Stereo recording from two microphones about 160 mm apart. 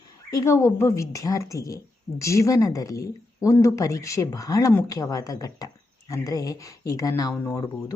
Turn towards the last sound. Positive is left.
turn(degrees=20)  # may be behind; listen again after turning